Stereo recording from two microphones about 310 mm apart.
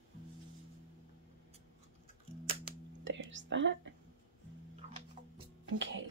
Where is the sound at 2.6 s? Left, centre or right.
Right.